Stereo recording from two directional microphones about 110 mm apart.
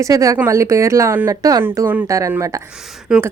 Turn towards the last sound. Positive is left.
turn(degrees=-10)  # may be behind; listen again after turning